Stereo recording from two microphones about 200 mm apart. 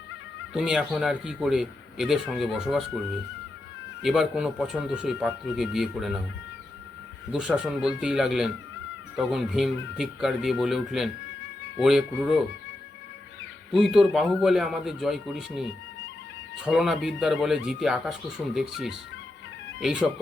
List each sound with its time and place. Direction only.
0.5 s a man's voice: 5° right (ahead or behind)
4.0 s a man's voice: 5° right (ahead or behind)
7.3 s a man's voice: 5° right (ahead or behind)
13.7 s a man's voice: centre (ahead or behind)